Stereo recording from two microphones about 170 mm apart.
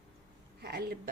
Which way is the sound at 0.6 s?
70° right (ahead or behind).